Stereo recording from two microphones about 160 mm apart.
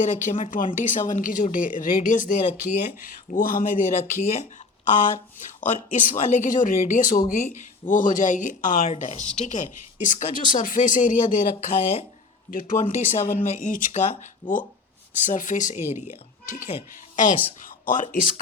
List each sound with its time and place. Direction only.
0.0 s speech: 50° left (ahead or behind)
5.6 s speech: 50° left (ahead or behind)
12.5 s speech: 55° left (ahead or behind)
17.2 s speech: 55° left (ahead or behind)